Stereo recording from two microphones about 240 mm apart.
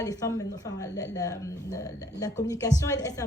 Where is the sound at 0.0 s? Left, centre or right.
Centre.